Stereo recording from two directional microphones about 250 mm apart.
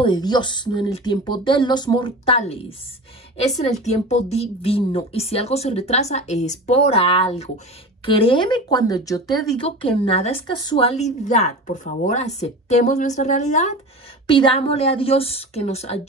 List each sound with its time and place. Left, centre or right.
0.0 s speech: centre